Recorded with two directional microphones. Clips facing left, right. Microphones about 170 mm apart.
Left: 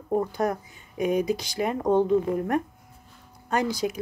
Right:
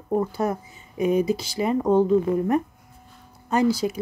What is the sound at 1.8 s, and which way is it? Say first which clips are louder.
Speech: right 2 dB; 15° left (ahead or behind).